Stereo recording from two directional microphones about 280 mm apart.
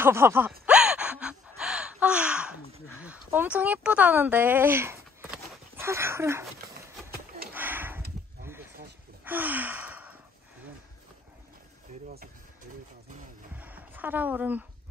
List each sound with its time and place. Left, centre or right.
0.0 s gasp: centre
3.0 s speech: centre
7.5 s a sound: centre
9.2 s gasp: centre
11.9 s vehicle: right
13.6 s a sound: centre